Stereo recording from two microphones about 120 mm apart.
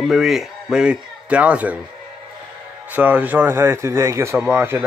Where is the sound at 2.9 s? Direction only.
15° right (ahead or behind).